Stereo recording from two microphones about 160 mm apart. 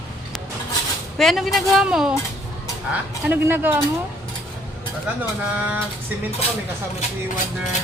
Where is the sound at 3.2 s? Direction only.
10° right (ahead or behind).